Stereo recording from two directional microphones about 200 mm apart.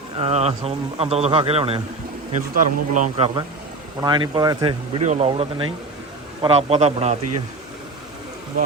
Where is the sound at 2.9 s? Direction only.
35° right (ahead or behind).